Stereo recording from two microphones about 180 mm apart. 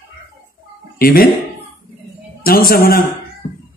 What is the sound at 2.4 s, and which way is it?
Speech, 55° left (ahead or behind).